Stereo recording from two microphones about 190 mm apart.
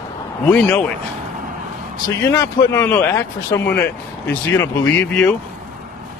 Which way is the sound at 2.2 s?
15° left (ahead or behind).